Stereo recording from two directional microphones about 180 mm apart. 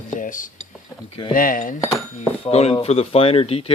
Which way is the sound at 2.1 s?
35° left (ahead or behind).